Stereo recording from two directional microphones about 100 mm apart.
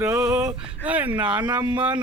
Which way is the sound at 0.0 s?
25° right (ahead or behind).